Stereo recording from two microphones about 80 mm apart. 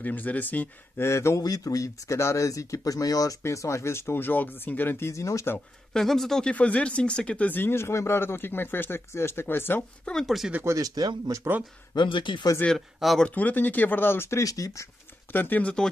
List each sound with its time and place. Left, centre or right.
0.0 s speech: left
1.0 s speech: left
1.4 s speech: left
5.9 s speech: centre; by 9.8 s left
10.0 s speech: centre
10.6 s speech: right
11.0 s speech: right
11.9 s speech: left
12.6 s speech: centre
13.3 s speech: centre
14.4 s speech: left
15.3 s speech: left